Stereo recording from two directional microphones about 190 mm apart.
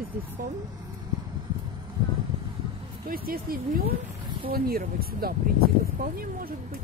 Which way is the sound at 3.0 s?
50° right (ahead or behind).